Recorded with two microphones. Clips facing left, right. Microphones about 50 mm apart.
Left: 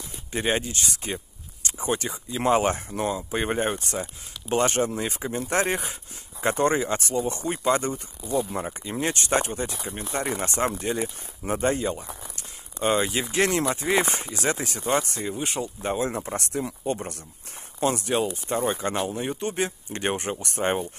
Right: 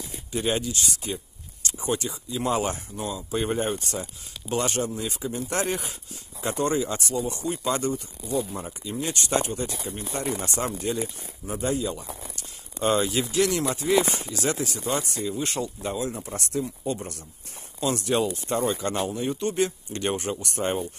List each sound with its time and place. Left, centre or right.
0.3 s speech: left
8.5 s speech: left
11.4 s speech: left
12.8 s speech: left
15.4 s speech: centre
15.8 s speech: left
16.3 s speech: left
17.9 s speech: left